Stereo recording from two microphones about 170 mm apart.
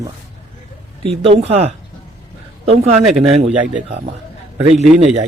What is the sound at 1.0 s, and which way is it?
Speech, 30° right (ahead or behind).